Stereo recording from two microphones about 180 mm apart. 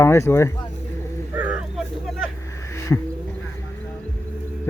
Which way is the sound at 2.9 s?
15° left (ahead or behind).